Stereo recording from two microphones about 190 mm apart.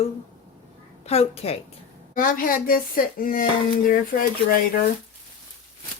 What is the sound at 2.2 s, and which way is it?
Speech, 45° left (ahead or behind).